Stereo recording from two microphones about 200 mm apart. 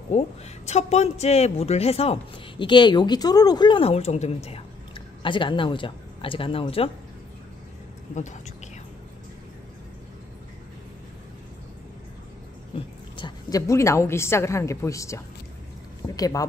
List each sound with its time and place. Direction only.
0.1 s speech: 35° left (ahead or behind)
8.1 s speech: 40° left (ahead or behind)
12.7 s a woman's voice: 25° left (ahead or behind)